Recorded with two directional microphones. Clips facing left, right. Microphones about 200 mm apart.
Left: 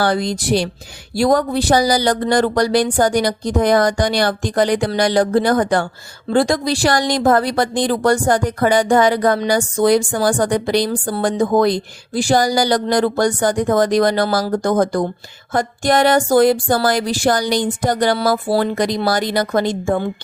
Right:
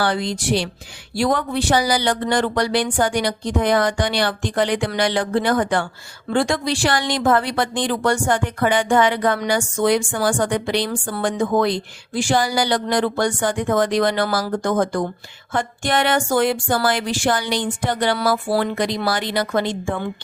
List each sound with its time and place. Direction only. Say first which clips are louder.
0.0 s speech: left 3 dB; 40° left (ahead or behind)